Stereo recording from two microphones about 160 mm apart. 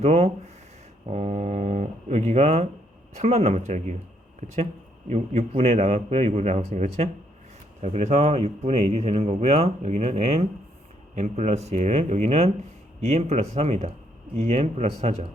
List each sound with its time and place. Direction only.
0.0 s a man's voice: 40° right (ahead or behind)